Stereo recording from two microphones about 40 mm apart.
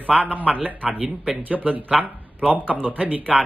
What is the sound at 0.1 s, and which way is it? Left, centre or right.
A man's voice, right.